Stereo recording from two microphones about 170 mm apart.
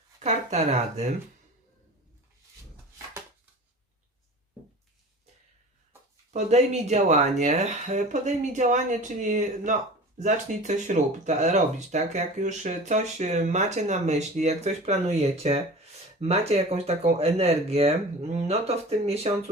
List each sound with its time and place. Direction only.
0.2 s speech: 40° right (ahead or behind)
6.3 s speech: 40° right (ahead or behind)